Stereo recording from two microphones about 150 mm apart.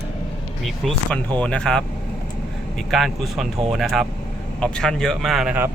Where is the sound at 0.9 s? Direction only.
5° left (ahead or behind).